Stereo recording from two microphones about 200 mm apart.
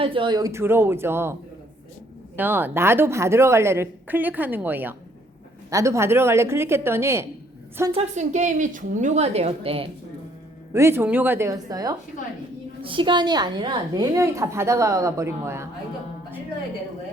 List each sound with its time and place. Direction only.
0.0 s a woman's voice: 25° right (ahead or behind)
7.9 s a woman's voice: 35° right (ahead or behind)
10.7 s a woman's voice: 15° right (ahead or behind)